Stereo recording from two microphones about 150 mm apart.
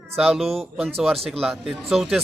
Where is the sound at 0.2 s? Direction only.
Centre (ahead or behind).